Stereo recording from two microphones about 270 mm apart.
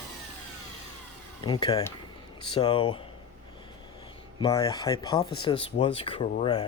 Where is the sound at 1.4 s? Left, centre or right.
Centre.